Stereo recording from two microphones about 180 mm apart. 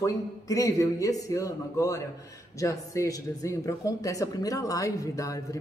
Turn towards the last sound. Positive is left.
turn(degrees=20)  # may be behind; listen again after turning